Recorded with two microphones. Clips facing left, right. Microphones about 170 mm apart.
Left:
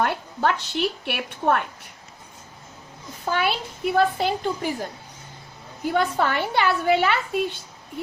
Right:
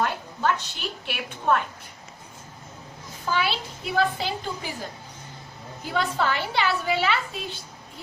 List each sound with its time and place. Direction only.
0.0 s a woman's voice: 65° left (ahead or behind)
3.2 s a woman's voice: 55° left (ahead or behind)
5.8 s a woman's voice: 55° left (ahead or behind)